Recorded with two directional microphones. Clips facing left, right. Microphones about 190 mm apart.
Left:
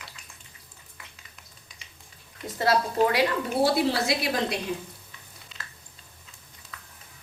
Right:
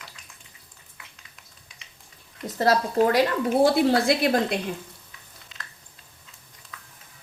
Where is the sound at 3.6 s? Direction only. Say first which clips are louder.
Right 4 dB; 50° right (ahead or behind).